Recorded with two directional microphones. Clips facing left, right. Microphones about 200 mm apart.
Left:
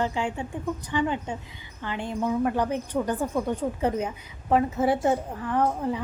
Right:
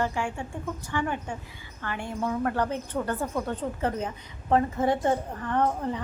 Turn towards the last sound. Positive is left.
turn(degrees=5)  # may be behind; listen again after turning